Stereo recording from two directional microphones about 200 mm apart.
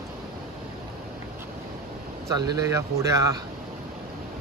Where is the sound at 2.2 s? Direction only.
15° right (ahead or behind).